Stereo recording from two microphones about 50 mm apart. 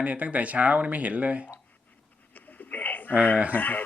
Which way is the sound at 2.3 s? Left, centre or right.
Left.